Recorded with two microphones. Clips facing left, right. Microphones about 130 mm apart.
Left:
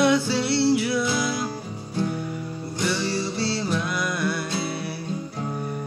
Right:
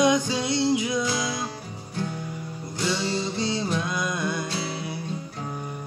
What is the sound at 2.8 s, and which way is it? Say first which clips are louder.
Music: left 1 dB; 20° right (ahead or behind).